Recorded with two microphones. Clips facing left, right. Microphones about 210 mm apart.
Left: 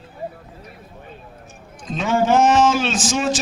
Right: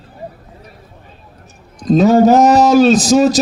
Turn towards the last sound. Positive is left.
turn(degrees=-40)  # may be behind; listen again after turning